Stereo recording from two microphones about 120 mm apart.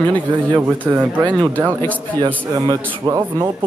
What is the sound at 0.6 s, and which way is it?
Speech, 15° right (ahead or behind).